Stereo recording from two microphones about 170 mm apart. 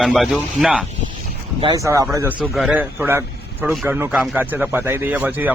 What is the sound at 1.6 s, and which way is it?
Speech, 20° right (ahead or behind).